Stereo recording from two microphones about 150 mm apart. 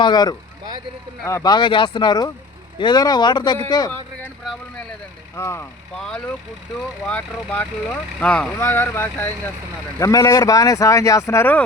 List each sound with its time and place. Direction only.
0.0 s speech: 30° left (ahead or behind)
5.4 s speech: 15° left (ahead or behind)
5.9 s speech: 5° left (ahead or behind)